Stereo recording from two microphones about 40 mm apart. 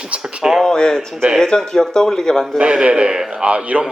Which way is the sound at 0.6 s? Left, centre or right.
Centre.